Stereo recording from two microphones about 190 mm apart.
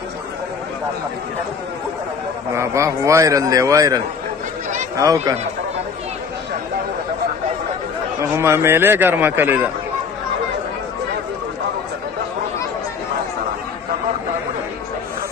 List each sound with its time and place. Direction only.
2.5 s speech: 15° right (ahead or behind)
8.2 s speech: 15° right (ahead or behind)